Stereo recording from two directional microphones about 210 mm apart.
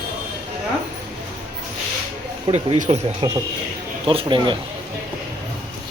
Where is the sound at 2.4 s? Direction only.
30° right (ahead or behind).